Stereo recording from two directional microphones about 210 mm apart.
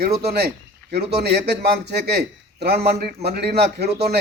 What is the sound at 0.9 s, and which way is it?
Speech, 50° right (ahead or behind).